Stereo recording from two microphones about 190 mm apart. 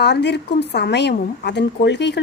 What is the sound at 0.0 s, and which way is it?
Speech, 65° left (ahead or behind).